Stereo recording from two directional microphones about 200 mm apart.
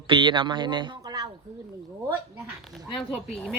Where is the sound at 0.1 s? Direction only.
25° right (ahead or behind).